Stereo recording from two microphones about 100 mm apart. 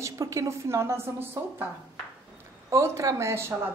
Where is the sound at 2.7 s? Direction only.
30° right (ahead or behind).